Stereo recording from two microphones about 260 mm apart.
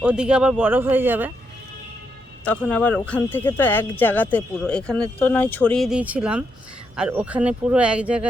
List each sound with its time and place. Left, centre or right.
0.0 s speech: centre
2.4 s speech: centre